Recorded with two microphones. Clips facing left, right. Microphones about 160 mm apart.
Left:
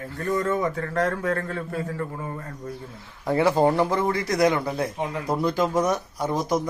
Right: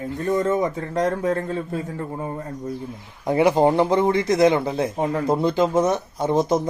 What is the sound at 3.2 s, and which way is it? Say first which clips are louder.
Speech: right 3 dB; 20° right (ahead or behind).